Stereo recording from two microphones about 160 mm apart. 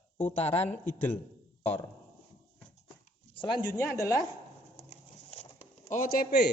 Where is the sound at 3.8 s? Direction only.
20° left (ahead or behind).